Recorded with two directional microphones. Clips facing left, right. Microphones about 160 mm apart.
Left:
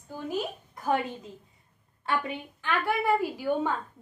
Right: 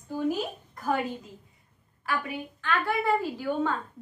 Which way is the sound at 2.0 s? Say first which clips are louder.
Left 1 dB; 20° left (ahead or behind).